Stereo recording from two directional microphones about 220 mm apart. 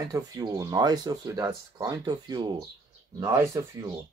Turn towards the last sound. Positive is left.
turn(degrees=-15)  # may be behind; listen again after turning